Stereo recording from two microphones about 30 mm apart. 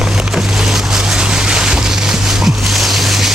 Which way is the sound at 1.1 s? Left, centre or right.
Right.